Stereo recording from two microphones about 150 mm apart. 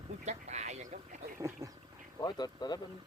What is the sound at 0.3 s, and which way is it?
Quack, 50° right (ahead or behind).